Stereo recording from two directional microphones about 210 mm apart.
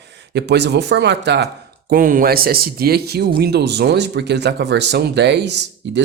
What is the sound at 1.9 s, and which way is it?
Speech, 40° right (ahead or behind).